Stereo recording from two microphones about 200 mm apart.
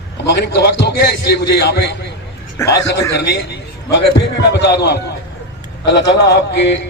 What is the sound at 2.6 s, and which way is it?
Speech, 15° left (ahead or behind).